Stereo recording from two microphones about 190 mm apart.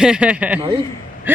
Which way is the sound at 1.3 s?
10° right (ahead or behind).